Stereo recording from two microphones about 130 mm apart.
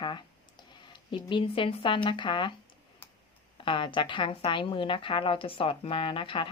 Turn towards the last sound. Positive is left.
turn(degrees=40)  # may be behind; listen again after turning